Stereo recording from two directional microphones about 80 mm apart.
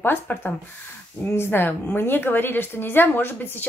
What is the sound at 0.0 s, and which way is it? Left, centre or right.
A woman's voice, left.